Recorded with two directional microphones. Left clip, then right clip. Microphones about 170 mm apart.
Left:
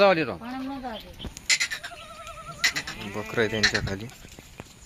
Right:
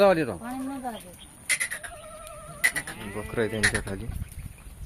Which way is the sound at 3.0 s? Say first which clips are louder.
Left 2 dB; 20° left (ahead or behind).